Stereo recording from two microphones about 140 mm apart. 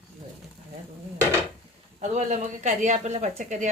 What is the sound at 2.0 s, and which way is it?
Speech, 60° right (ahead or behind).